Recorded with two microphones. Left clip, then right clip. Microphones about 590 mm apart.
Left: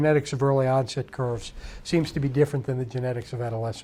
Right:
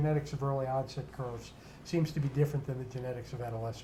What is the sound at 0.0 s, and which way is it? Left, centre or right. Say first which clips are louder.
Speech: left 12 dB; left.